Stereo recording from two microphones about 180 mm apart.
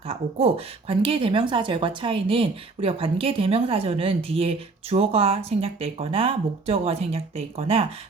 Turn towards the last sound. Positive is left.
turn(degrees=-35)  # may be behind; listen again after turning